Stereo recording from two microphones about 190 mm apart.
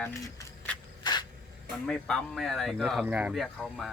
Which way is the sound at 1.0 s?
20° left (ahead or behind).